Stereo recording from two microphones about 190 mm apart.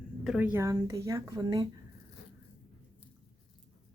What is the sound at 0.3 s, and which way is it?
Speech, 5° right (ahead or behind).